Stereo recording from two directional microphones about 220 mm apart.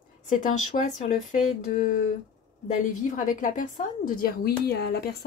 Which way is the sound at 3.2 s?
35° left (ahead or behind).